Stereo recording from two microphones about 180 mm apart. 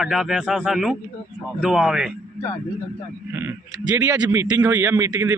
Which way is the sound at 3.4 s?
15° right (ahead or behind).